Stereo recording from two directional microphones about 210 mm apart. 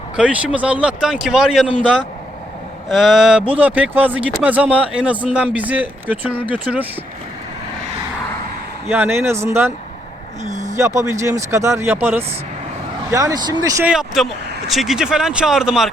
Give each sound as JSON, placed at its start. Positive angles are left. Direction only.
{"t": 0.2, "sound": "speech", "side_deg": -5}
{"t": 8.9, "sound": "speech", "side_deg": -10}
{"t": 10.4, "sound": "speech", "side_deg": -35}
{"t": 10.8, "sound": "speech", "side_deg": -15}
{"t": 13.9, "sound": "speech", "side_deg": 0}